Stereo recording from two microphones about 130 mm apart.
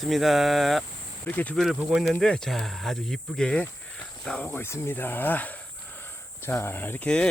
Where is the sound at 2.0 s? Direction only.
5° left (ahead or behind).